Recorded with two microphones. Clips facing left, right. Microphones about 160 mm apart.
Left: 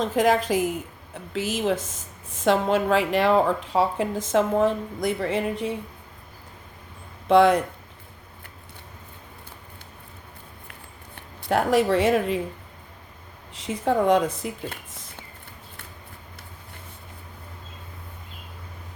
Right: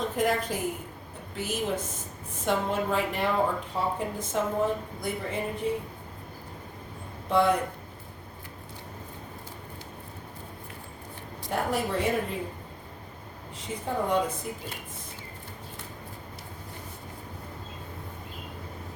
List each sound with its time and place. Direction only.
0.0 s a woman's voice: 90° left
7.3 s a woman's voice: 90° left
11.4 s a woman's voice: 90° left
13.6 s a woman's voice: 90° left